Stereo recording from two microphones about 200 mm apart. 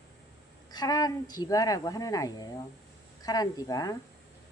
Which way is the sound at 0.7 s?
20° left (ahead or behind).